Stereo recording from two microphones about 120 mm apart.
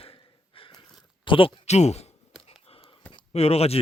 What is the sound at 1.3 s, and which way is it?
Speech, 45° left (ahead or behind).